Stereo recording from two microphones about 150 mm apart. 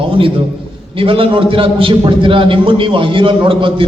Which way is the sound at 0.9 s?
35° right (ahead or behind).